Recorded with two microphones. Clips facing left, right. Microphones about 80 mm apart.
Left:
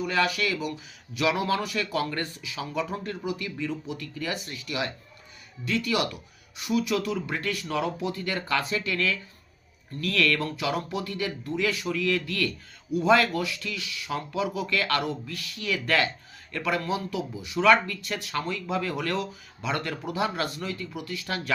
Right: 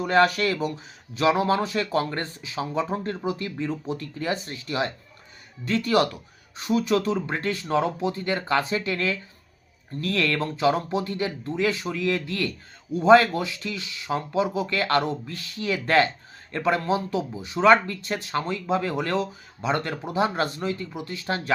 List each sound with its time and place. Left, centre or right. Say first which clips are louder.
0.0 s speech: right 6 dB; right